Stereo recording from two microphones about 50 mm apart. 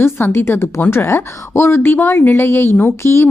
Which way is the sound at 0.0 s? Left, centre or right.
Left.